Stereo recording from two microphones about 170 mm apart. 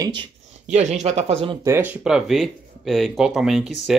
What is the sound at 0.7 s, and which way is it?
Speech, 40° right (ahead or behind).